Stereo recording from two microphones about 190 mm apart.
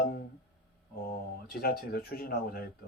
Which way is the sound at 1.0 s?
50° left (ahead or behind).